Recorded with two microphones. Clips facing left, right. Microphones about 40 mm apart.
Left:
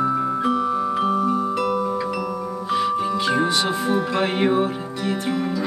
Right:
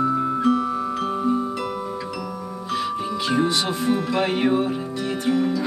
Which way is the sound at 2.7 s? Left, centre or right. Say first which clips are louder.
Left 4 dB; centre.